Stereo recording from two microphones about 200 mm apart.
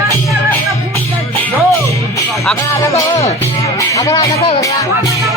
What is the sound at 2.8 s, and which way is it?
Music, 15° left (ahead or behind).